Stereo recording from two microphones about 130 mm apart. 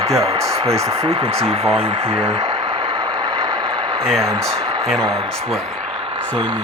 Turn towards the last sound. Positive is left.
turn(degrees=-40)  # may be behind; listen again after turning